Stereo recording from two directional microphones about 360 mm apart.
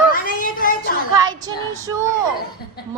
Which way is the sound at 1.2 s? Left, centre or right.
Centre.